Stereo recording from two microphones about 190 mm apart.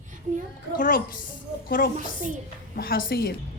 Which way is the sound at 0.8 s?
45° left (ahead or behind).